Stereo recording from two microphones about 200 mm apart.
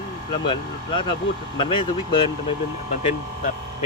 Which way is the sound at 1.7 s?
25° left (ahead or behind).